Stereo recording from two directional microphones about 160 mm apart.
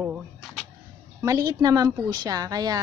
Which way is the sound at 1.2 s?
20° right (ahead or behind).